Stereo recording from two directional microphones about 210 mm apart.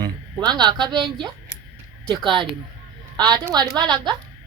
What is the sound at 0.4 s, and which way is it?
Speech, 20° right (ahead or behind).